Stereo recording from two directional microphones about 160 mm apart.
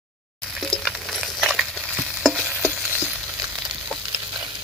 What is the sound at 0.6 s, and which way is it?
Stir, centre (ahead or behind).